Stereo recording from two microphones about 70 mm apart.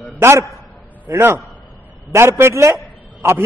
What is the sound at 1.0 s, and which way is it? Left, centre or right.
A man's voice, right.